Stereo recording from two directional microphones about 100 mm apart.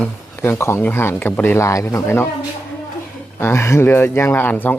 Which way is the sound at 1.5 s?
30° left (ahead or behind).